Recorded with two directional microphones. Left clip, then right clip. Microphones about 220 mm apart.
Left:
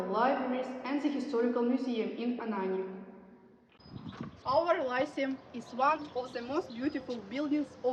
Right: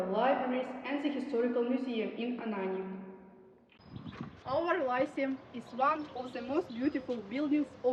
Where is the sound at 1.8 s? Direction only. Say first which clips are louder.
Left 1 dB; 45° left (ahead or behind).